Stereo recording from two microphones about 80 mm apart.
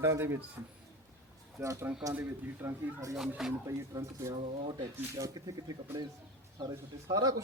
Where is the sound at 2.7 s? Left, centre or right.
Right.